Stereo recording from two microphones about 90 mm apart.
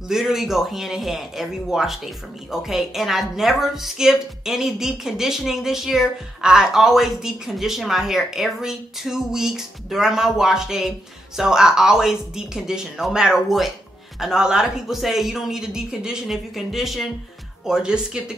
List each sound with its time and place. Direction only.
0.1 s speech: 5° right (ahead or behind)